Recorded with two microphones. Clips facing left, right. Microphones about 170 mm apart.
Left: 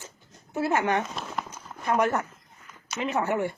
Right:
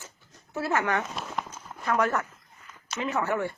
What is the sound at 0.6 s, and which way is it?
Speech, 20° left (ahead or behind).